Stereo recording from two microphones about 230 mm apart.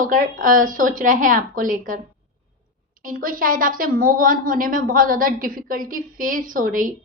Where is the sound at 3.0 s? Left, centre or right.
Right.